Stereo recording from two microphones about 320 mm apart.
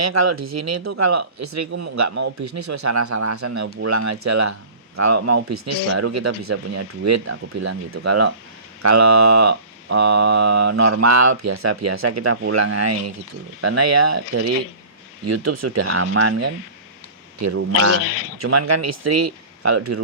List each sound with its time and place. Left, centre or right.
0.0 s speech: right
18.0 s speech: left
18.3 s speech: right